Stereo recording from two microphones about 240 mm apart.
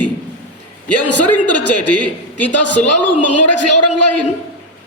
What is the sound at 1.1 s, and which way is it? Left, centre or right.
Speech, centre.